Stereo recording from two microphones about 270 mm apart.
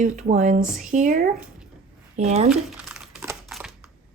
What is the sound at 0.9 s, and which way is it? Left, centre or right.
Speech, right.